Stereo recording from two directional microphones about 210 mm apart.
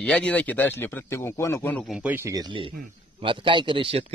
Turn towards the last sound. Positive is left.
turn(degrees=-25)  # may be behind; listen again after turning